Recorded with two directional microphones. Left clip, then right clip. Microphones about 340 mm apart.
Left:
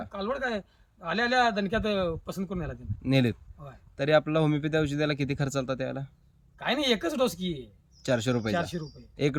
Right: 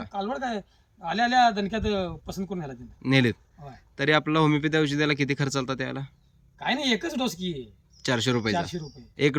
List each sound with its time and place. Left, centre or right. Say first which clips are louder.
0.0 s a man's voice: right 1 dB; centre